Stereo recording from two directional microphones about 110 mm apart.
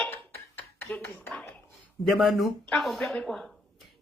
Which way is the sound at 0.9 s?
20° left (ahead or behind).